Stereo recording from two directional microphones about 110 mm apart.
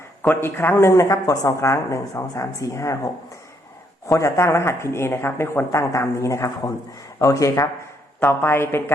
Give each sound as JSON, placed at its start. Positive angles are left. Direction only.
{"t": 0.3, "sound": "speech", "side_deg": 20}